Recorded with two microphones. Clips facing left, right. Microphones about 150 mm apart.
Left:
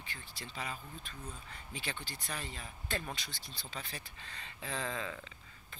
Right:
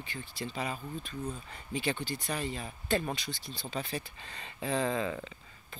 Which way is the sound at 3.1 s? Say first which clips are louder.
Right 7 dB; 30° right (ahead or behind).